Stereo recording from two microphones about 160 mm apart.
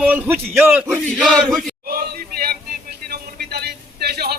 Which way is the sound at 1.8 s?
70° right (ahead or behind).